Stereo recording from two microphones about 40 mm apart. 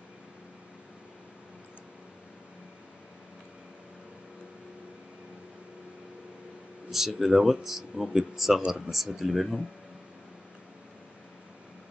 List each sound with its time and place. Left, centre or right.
6.9 s a man's voice: centre
8.6 s a man's voice: centre
8.9 s speech: centre